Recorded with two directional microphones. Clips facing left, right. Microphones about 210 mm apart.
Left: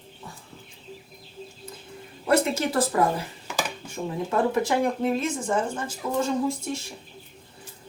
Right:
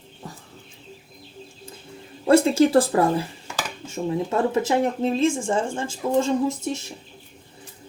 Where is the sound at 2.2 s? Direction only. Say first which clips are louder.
Right 7 dB; 30° right (ahead or behind).